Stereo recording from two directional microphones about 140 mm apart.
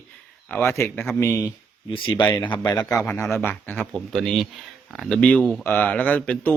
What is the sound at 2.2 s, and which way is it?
Speech, 35° left (ahead or behind).